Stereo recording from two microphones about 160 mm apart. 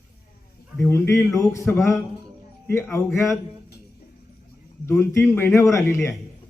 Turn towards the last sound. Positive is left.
turn(degrees=15)  # may be behind; listen again after turning